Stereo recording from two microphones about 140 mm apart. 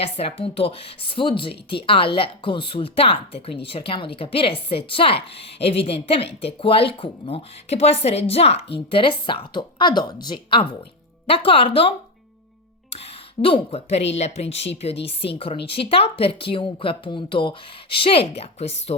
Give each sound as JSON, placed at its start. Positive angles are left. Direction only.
{"t": 0.0, "sound": "speech", "side_deg": 45}
{"t": 13.0, "sound": "speech", "side_deg": 45}